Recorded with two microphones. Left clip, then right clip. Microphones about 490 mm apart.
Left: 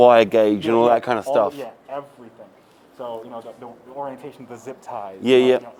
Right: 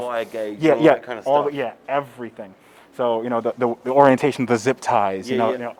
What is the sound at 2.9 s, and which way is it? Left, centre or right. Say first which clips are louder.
Speech: right 11 dB; right.